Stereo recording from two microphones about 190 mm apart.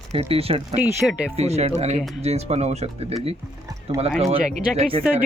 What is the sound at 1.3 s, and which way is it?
Speech, 35° right (ahead or behind).